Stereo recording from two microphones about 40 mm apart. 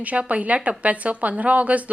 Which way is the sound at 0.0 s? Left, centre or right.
Right.